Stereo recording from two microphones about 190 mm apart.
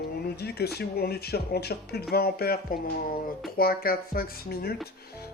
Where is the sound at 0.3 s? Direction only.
55° left (ahead or behind).